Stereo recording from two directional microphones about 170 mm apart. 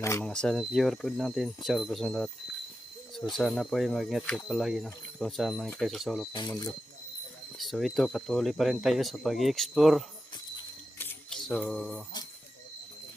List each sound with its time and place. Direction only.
0.0 s speech: 15° left (ahead or behind)
0.3 s speech: 5° left (ahead or behind)
6.3 s speech: 20° left (ahead or behind)
7.6 s speech: centre (ahead or behind)
10.9 s camera: 10° left (ahead or behind)
11.4 s speech: centre (ahead or behind)